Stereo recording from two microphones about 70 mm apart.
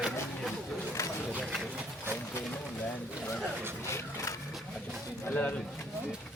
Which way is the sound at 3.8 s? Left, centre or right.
Left.